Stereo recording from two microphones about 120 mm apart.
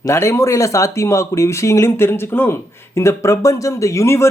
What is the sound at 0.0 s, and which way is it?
Speech, 25° left (ahead or behind).